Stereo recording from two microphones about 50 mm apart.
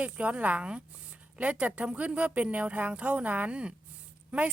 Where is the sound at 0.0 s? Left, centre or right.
Right.